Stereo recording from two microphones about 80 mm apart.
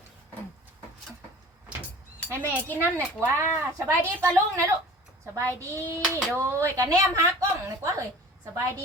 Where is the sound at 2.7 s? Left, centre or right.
Left.